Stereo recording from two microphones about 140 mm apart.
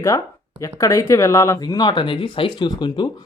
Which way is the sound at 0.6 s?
25° left (ahead or behind).